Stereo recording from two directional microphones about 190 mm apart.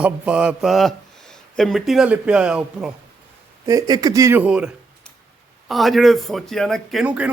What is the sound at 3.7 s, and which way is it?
A man's voice, 20° right (ahead or behind).